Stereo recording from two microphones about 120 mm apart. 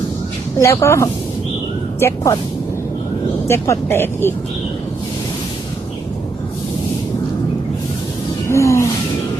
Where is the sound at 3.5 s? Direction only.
20° left (ahead or behind).